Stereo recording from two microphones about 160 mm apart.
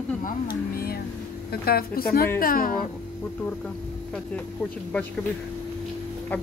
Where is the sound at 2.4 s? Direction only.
60° left (ahead or behind).